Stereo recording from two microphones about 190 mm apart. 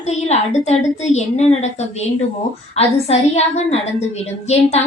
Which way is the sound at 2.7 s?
35° left (ahead or behind).